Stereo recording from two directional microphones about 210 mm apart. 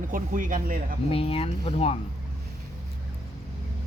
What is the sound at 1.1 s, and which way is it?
Speech, 25° left (ahead or behind).